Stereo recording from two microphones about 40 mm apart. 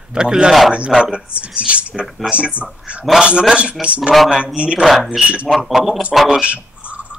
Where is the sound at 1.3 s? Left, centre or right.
Right.